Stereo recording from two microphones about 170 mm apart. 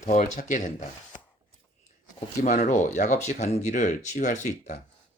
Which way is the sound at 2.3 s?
45° left (ahead or behind).